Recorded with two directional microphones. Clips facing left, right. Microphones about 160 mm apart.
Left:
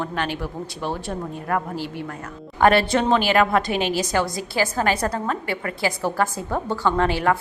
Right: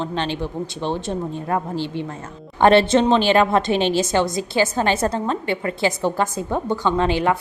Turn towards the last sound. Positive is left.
turn(degrees=-20)  # may be behind; listen again after turning